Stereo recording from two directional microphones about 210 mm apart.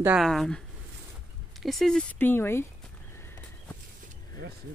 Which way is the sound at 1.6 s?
Centre (ahead or behind).